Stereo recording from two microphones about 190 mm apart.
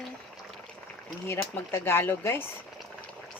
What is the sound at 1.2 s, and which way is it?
Speech, 15° left (ahead or behind).